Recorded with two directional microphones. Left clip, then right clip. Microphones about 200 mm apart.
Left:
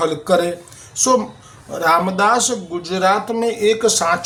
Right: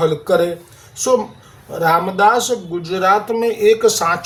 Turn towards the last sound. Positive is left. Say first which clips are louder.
# right 2 dB
turn(degrees=15)  # may be behind; listen again after turning